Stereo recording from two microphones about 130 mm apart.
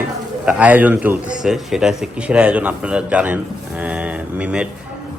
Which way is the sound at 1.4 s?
Centre (ahead or behind).